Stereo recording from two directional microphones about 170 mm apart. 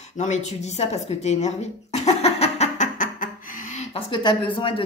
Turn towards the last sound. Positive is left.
turn(degrees=30)  # may be behind; listen again after turning